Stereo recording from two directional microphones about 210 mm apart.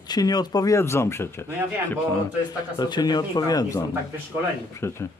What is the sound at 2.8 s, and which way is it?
Speech, 20° left (ahead or behind).